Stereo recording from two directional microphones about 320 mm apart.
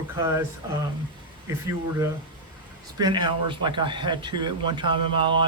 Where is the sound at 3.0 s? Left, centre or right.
Centre.